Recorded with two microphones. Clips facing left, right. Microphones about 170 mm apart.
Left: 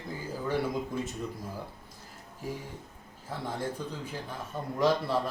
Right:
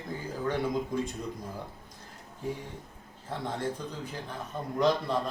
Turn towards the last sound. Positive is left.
turn(degrees=5)  # may be behind; listen again after turning